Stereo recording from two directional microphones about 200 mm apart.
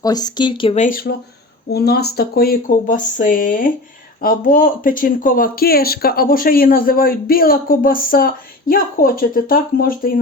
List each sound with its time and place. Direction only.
0.0 s speech: 20° left (ahead or behind)
0.9 s speech: 45° left (ahead or behind)